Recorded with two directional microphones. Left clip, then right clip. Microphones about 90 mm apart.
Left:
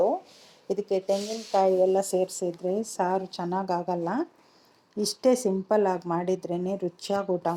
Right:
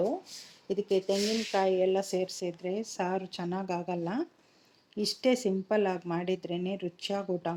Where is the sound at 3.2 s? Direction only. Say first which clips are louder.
Left 5 dB; 30° right (ahead or behind).